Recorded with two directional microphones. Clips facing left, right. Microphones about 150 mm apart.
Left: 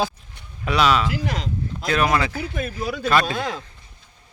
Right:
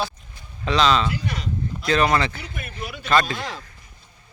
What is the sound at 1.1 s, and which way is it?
Speech, 90° left.